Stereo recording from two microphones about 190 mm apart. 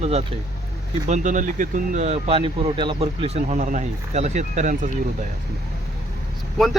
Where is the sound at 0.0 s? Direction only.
35° right (ahead or behind).